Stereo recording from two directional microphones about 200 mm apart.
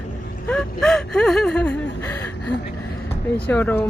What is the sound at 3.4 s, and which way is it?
Speech, 10° left (ahead or behind).